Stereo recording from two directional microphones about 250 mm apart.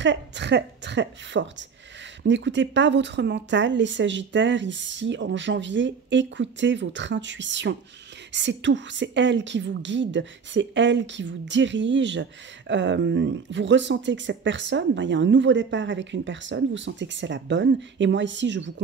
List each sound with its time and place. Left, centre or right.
0.0 s a woman's voice: right